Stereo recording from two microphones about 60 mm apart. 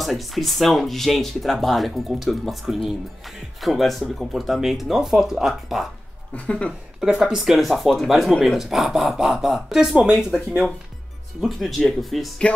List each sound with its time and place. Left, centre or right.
0.0 s speech: centre
6.3 s speech: centre
7.0 s speech: centre
11.4 s speech: centre